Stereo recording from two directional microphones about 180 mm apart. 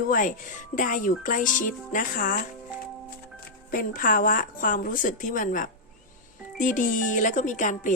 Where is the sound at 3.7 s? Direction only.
50° left (ahead or behind).